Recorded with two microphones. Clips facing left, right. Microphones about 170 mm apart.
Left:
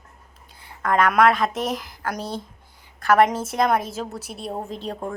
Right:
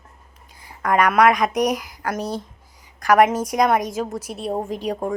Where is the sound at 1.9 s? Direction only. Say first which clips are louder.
Right 3 dB; centre (ahead or behind).